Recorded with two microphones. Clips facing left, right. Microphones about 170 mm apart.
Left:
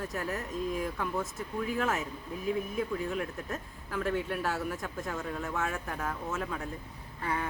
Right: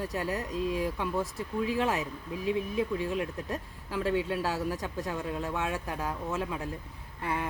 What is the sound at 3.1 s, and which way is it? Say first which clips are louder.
Speech: right 2 dB; 15° right (ahead or behind).